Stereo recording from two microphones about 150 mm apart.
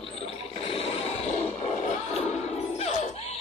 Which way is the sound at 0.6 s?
45° left (ahead or behind).